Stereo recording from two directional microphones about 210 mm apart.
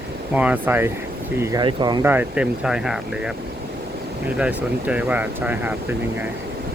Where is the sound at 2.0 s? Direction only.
10° right (ahead or behind).